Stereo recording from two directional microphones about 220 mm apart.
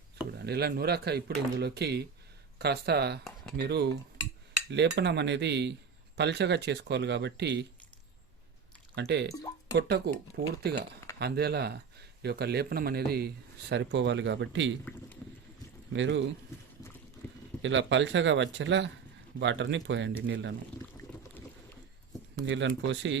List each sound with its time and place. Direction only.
0.3 s speech: 45° right (ahead or behind)
9.0 s speech: 50° right (ahead or behind)
9.3 s speech: 15° left (ahead or behind)
9.7 s speech: 45° right (ahead or behind)
15.9 s speech: 55° right (ahead or behind)
17.6 s speech: 55° right (ahead or behind)
21.1 s boat: 5° left (ahead or behind)
22.4 s speech: 55° right (ahead or behind)